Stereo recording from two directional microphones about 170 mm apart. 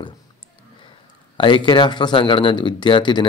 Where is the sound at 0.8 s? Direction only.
30° left (ahead or behind).